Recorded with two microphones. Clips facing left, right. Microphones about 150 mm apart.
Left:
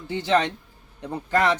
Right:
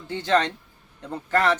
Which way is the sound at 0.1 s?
10° left (ahead or behind).